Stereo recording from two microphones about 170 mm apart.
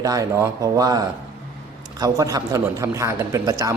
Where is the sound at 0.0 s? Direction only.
20° right (ahead or behind).